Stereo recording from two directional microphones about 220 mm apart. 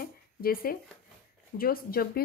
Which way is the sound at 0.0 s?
40° left (ahead or behind).